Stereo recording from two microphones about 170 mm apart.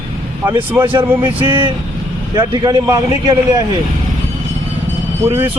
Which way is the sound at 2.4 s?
25° right (ahead or behind).